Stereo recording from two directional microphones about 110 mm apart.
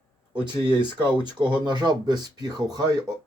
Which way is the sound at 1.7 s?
40° right (ahead or behind).